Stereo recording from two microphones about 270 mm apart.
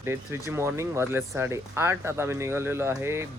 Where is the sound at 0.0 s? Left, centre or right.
Centre.